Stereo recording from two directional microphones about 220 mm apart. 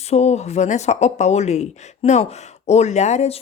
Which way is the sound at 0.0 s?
30° left (ahead or behind).